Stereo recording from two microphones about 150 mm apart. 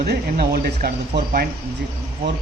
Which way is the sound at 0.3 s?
70° right (ahead or behind).